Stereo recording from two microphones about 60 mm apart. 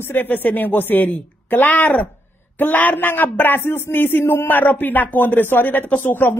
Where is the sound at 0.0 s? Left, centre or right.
Left.